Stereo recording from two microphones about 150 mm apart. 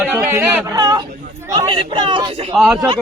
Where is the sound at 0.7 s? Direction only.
25° right (ahead or behind).